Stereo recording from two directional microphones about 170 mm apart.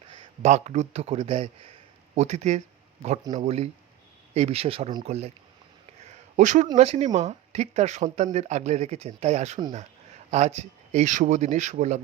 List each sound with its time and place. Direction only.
0.4 s speech: 45° right (ahead or behind)
6.1 s a sound: 45° right (ahead or behind)
6.7 s speech: 40° right (ahead or behind)